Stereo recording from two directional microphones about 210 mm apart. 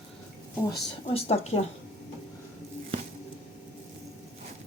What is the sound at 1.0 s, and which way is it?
Speech, 30° left (ahead or behind).